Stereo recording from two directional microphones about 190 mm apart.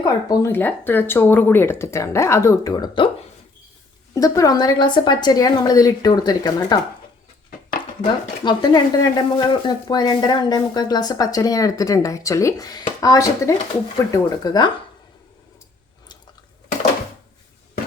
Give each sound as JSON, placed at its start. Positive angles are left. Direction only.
{"t": 0.0, "sound": "speech", "side_deg": 15}
{"t": 4.1, "sound": "speech", "side_deg": 20}
{"t": 8.0, "sound": "speech", "side_deg": 25}